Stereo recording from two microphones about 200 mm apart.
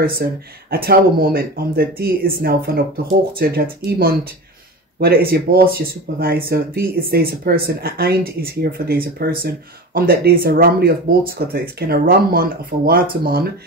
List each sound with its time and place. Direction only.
0.0 s speech: 50° right (ahead or behind)